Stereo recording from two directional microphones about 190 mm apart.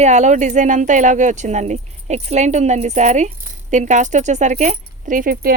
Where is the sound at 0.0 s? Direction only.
40° right (ahead or behind).